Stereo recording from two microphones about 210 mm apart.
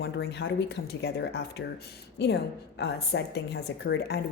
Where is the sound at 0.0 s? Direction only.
55° left (ahead or behind).